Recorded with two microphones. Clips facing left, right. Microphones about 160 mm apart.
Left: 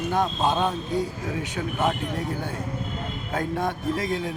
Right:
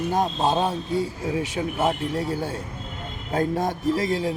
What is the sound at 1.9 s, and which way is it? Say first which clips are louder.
Speech: right 2 dB; 35° right (ahead or behind).